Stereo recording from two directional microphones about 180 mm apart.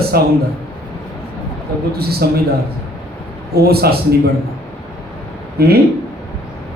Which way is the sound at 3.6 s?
60° right (ahead or behind).